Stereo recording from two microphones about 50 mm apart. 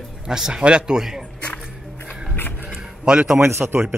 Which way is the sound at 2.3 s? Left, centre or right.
Left.